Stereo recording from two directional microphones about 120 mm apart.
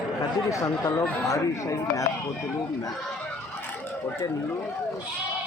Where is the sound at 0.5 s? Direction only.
30° left (ahead or behind).